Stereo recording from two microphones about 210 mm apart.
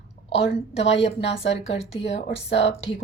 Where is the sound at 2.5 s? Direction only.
55° left (ahead or behind).